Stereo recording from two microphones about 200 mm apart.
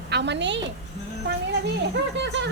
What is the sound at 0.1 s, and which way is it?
Speech, 60° right (ahead or behind).